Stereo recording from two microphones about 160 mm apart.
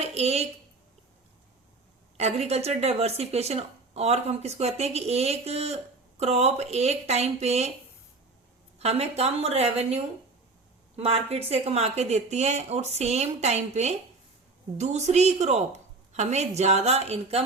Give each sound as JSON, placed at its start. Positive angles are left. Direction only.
{"t": 0.1, "sound": "a woman's voice", "side_deg": -40}
{"t": 2.1, "sound": "speech", "side_deg": -40}
{"t": 8.8, "sound": "a woman's voice", "side_deg": -40}